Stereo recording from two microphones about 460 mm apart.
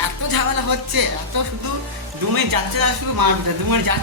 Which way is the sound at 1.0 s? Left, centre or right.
Right.